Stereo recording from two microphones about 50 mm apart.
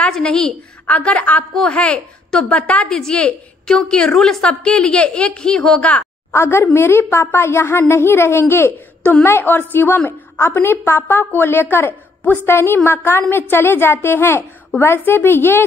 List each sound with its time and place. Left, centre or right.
0.1 s a woman's voice: centre
0.8 s a child's voice: left
1.5 s a woman's voice: centre
1.8 s a child's voice: left
4.5 s a child's voice: left
5.8 s a child's voice: left
6.3 s a child's voice: left
9.2 s a woman's voice: left